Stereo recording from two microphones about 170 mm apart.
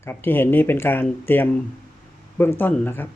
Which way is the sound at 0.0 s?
15° left (ahead or behind).